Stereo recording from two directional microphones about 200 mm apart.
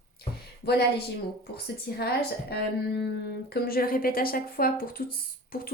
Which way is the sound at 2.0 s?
50° left (ahead or behind).